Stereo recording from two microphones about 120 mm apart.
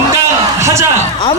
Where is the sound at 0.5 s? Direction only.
25° right (ahead or behind).